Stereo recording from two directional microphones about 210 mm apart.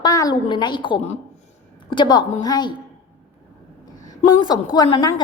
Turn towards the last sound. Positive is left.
turn(degrees=20)  # may be behind; listen again after turning